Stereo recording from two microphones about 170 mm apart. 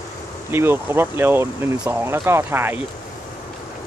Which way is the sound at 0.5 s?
15° right (ahead or behind).